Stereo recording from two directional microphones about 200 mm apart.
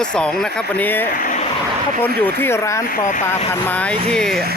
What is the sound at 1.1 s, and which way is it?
Speech, 40° left (ahead or behind).